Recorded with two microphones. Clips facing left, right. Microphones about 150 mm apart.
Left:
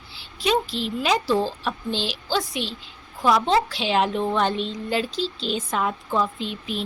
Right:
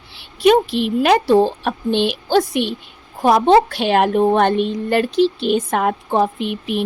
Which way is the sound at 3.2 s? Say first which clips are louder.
Right 7 dB; 55° right (ahead or behind).